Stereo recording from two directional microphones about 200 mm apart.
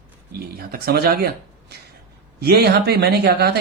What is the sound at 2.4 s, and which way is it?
Speech, 55° right (ahead or behind).